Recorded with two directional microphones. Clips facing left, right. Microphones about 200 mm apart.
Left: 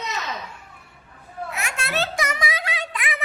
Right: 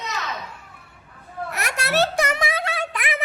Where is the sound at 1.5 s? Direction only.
65° right (ahead or behind).